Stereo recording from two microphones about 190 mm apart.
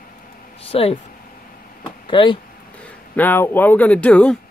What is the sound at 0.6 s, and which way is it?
Speech, 30° left (ahead or behind).